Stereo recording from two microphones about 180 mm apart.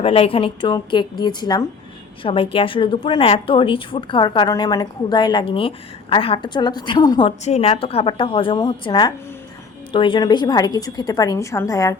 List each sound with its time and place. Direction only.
0.0 s a woman's voice: 30° left (ahead or behind)
7.4 s a woman's voice: 35° left (ahead or behind); by 11.9 s 20° left (ahead or behind)